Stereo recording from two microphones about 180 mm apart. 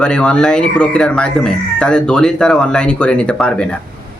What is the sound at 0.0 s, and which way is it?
Speech, 5° left (ahead or behind).